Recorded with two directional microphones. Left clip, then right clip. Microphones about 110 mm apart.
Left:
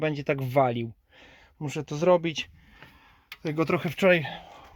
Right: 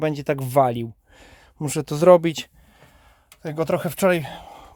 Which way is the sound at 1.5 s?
65° right (ahead or behind).